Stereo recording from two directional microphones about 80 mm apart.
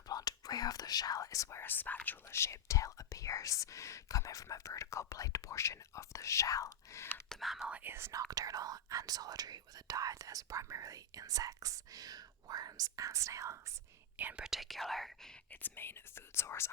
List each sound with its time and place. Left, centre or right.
0.1 s whispering: left
2.0 s speech: left
7.3 s speech: centre
7.7 s speech: right
14.2 s speech: right
14.4 s speech: centre
15.4 s speech: left